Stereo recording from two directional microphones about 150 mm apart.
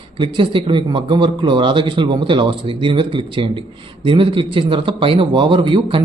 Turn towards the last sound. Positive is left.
turn(degrees=-35)  # may be behind; listen again after turning